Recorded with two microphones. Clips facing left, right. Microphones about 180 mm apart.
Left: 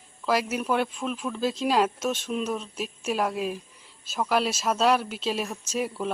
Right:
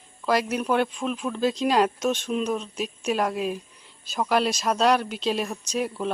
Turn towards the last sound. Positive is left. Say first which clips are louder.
# right 1 dB
turn(degrees=5)  # may be behind; listen again after turning